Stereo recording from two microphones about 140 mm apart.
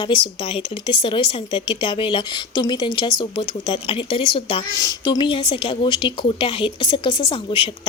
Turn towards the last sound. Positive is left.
turn(degrees=40)  # may be behind; listen again after turning